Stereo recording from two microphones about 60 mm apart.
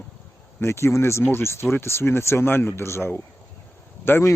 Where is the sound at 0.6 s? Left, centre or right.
Left.